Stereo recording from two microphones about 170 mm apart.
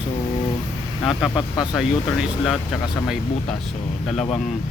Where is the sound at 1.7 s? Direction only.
Centre (ahead or behind).